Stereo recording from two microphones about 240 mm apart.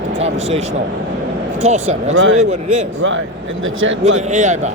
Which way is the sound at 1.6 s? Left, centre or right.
Right.